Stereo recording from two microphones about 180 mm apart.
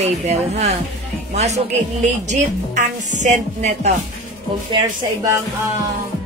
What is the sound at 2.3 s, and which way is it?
Music, 40° right (ahead or behind).